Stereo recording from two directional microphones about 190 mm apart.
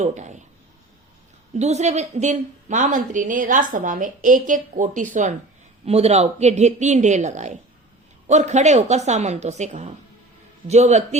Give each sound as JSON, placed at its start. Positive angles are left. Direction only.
{"t": 0.0, "sound": "speech", "side_deg": -40}
{"t": 1.5, "sound": "a woman's voice", "side_deg": -35}